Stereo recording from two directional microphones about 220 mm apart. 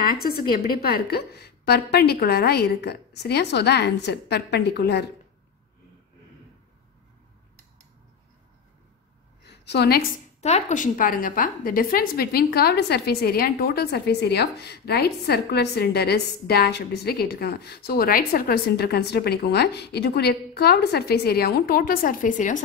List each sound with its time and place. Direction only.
0.0 s a woman's voice: 45° left (ahead or behind)
9.4 s a sound: 50° left (ahead or behind)
10.4 s a woman's voice: 30° left (ahead or behind)